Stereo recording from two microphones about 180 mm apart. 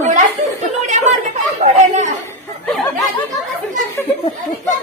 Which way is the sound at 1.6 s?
40° right (ahead or behind).